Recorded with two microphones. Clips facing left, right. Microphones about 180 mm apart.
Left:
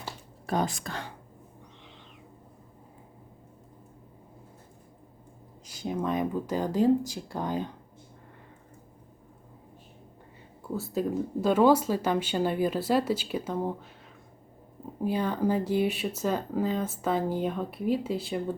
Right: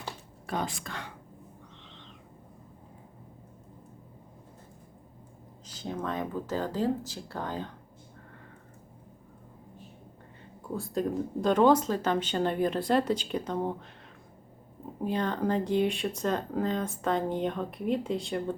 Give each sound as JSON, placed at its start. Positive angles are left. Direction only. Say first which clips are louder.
{"t": 0.4, "sound": "speech", "louder": "left 4 dB", "side_deg": 40}
{"t": 5.6, "sound": "speech", "louder": "left 4 dB", "side_deg": 10}
{"t": 10.8, "sound": "speech", "louder": "left 1 dB", "side_deg": 5}
{"t": 15.0, "sound": "speech", "louder": "left 2 dB", "side_deg": 10}